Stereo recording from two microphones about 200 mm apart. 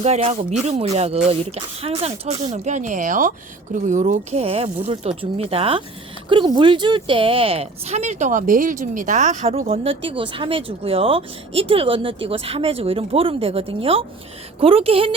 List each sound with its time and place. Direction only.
0.0 s speech: 30° right (ahead or behind)